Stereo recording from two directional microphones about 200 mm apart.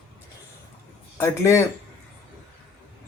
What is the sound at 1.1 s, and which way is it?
Speech, 15° left (ahead or behind).